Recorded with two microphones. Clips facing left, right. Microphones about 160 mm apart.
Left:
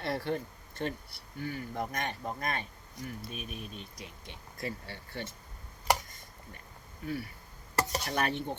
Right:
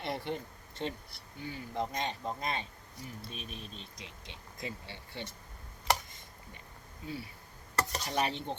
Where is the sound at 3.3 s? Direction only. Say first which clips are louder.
Left 3 dB; 30° right (ahead or behind).